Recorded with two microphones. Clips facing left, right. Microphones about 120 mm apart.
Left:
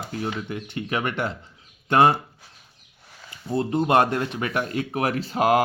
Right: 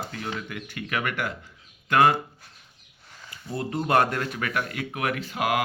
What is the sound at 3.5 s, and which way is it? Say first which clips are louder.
Speech: left 5 dB; 25° left (ahead or behind).